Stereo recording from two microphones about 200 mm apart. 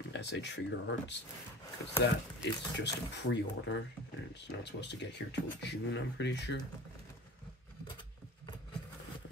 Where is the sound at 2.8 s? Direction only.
60° left (ahead or behind).